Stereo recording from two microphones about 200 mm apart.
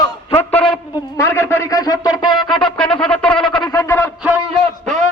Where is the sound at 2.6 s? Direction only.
5° left (ahead or behind).